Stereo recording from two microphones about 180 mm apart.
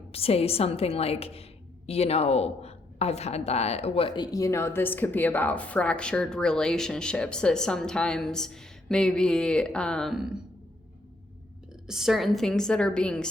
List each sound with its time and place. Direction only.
0.1 s a woman's voice: 35° left (ahead or behind); by 10.3 s centre (ahead or behind)
11.9 s a woman's voice: centre (ahead or behind)